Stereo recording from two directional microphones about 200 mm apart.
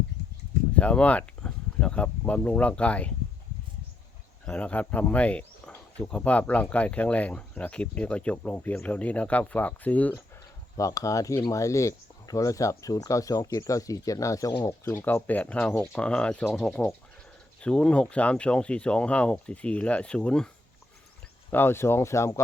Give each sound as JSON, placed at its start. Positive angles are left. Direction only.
{"t": 0.8, "sound": "speech", "side_deg": 5}
{"t": 4.4, "sound": "speech", "side_deg": 5}
{"t": 21.5, "sound": "speech", "side_deg": 10}